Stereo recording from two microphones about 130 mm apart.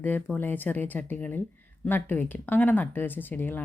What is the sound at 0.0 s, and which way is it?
Speech, 15° left (ahead or behind).